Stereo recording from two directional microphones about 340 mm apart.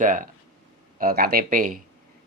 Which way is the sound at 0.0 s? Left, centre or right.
Right.